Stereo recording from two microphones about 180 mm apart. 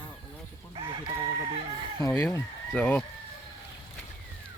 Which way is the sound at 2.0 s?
15° left (ahead or behind).